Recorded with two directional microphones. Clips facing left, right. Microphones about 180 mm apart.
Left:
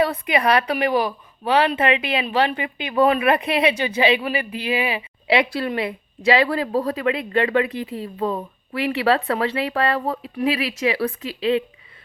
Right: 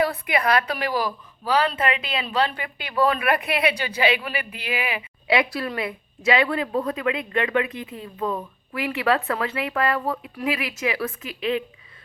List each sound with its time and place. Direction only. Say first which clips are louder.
0.0 s speech: left 3 dB; 25° left (ahead or behind)